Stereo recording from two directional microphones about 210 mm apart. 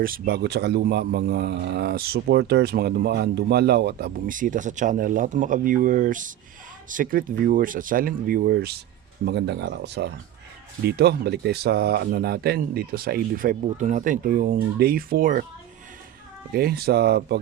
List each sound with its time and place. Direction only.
0.0 s a man's voice: 45° right (ahead or behind)
16.5 s a man's voice: 45° right (ahead or behind)